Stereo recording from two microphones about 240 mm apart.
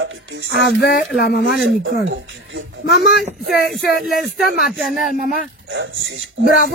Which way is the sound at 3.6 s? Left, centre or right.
Centre.